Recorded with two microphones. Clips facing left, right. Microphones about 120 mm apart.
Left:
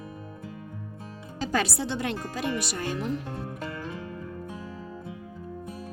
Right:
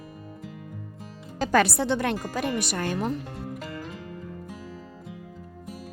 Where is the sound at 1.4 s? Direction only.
60° right (ahead or behind).